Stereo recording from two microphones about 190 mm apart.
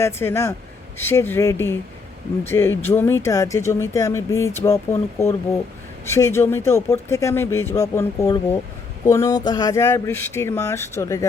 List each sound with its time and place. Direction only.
0.0 s speech: 15° left (ahead or behind)